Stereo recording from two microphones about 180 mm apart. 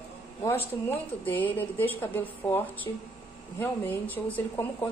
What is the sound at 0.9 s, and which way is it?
A woman's voice, 10° left (ahead or behind).